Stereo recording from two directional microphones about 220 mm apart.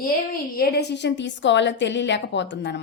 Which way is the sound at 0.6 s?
45° left (ahead or behind).